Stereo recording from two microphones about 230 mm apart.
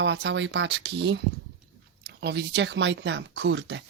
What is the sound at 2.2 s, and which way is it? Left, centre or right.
Speech, right.